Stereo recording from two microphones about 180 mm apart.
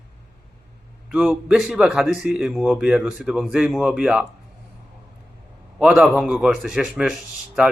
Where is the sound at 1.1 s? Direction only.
Centre (ahead or behind).